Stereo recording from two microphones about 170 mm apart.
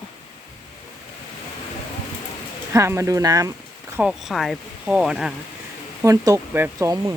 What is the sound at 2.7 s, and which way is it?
Speech, 15° right (ahead or behind).